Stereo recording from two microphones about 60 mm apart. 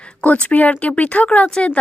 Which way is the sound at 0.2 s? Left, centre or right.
Left.